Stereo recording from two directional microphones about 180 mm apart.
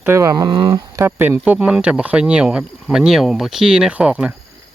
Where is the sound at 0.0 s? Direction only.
15° right (ahead or behind).